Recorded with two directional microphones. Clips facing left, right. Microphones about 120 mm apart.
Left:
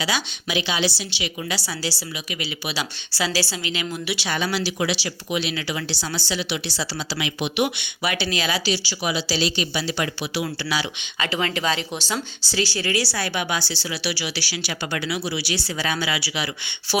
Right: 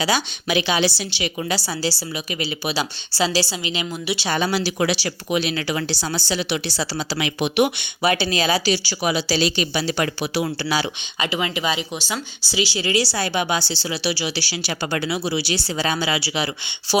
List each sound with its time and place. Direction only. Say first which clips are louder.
0.4 s a woman's voice: right 4 dB; 55° right (ahead or behind)
1.5 s a woman's voice: right 5 dB; 40° right (ahead or behind)
3.6 s speech: right 1 dB; 20° right (ahead or behind)
4.5 s a woman's voice: right 3 dB; 45° right (ahead or behind)
8.0 s a woman's voice: right 5 dB; 35° right (ahead or behind)
8.6 s a woman's voice: right 3 dB; 50° right (ahead or behind)
11.2 s speech: right 1 dB; 15° right (ahead or behind); by 17.0 s 30° right (ahead or behind)